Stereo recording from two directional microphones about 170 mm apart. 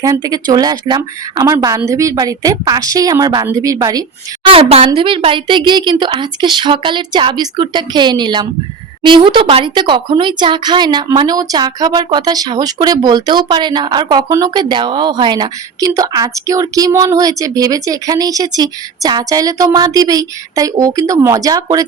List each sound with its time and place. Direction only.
0.0 s speech: 20° right (ahead or behind)
4.4 s a woman's voice: 35° right (ahead or behind)